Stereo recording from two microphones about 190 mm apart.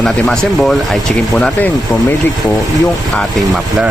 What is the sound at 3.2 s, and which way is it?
Speech, centre (ahead or behind).